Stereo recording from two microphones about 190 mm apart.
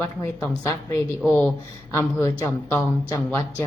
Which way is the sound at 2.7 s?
10° left (ahead or behind).